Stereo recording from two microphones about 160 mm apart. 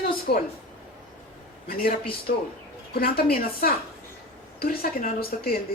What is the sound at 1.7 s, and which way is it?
Speech, 65° left (ahead or behind).